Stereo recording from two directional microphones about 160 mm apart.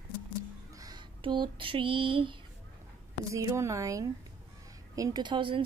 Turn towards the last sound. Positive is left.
turn(degrees=-30)  # may be behind; listen again after turning